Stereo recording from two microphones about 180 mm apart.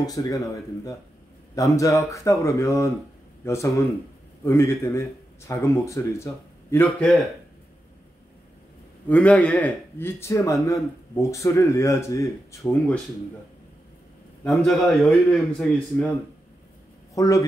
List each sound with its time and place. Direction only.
0.0 s speech: 20° left (ahead or behind)
9.1 s speech: 5° left (ahead or behind)
14.4 s a man's voice: centre (ahead or behind)
17.1 s speech: 20° left (ahead or behind)